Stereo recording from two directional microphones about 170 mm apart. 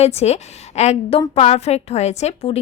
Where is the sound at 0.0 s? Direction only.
40° left (ahead or behind).